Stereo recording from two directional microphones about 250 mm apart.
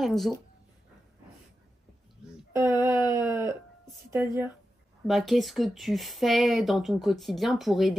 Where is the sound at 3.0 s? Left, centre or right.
Centre.